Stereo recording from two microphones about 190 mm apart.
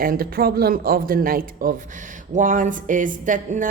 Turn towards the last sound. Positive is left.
turn(degrees=-45)  # may be behind; listen again after turning